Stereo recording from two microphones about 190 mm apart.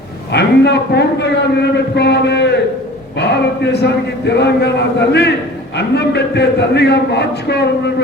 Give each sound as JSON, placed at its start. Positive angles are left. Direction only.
{"t": 0.3, "sound": "a man's voice", "side_deg": 65}